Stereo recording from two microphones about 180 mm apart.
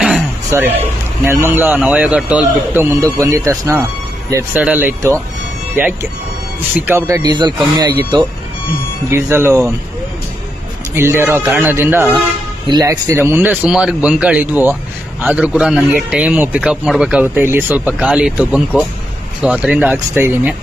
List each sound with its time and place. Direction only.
0.5 s a man's voice: 15° right (ahead or behind)
6.9 s a man's voice: 15° right (ahead or behind)
7.3 s speech: 25° right (ahead or behind)
9.1 s a man's voice: 15° right (ahead or behind)
11.0 s a man's voice: 15° right (ahead or behind)